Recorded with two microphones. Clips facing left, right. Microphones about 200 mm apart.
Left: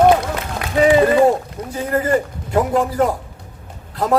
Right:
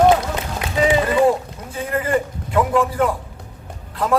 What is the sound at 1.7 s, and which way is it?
A man's voice, 35° left (ahead or behind).